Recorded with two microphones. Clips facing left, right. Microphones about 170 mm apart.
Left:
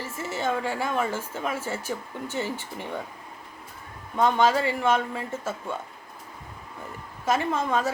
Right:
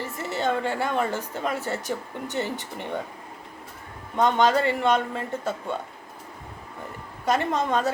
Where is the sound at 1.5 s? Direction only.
65° right (ahead or behind).